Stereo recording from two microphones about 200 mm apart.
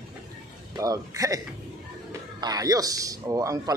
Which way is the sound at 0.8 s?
15° right (ahead or behind).